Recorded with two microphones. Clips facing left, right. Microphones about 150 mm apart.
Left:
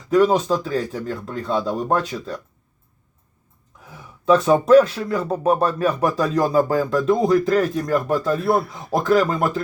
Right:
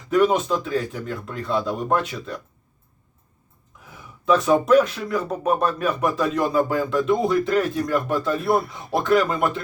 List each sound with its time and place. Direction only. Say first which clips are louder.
0.1 s speech: left 2 dB; 30° left (ahead or behind)
3.8 s speech: left 3 dB; 30° left (ahead or behind)
8.4 s speech: even; centre (ahead or behind)
8.9 s speech: left 2 dB; 40° left (ahead or behind)